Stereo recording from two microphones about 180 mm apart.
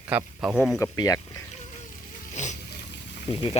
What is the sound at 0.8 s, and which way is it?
Speech, 20° left (ahead or behind).